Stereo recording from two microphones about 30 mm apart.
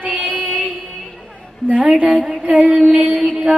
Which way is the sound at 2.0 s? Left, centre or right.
Right.